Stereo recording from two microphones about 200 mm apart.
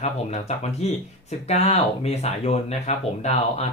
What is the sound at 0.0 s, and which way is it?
Speech, 35° left (ahead or behind).